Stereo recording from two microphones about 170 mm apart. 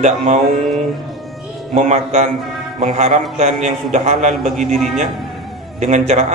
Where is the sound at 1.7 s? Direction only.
45° right (ahead or behind).